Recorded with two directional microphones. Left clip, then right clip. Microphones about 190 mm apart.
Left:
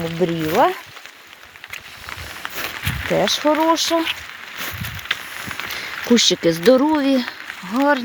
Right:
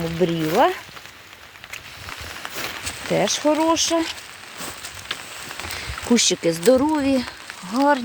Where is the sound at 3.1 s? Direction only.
45° left (ahead or behind).